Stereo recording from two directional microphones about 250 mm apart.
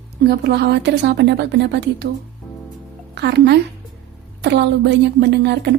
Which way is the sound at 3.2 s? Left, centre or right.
Right.